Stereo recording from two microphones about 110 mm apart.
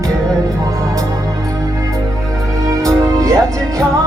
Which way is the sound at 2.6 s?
30° right (ahead or behind).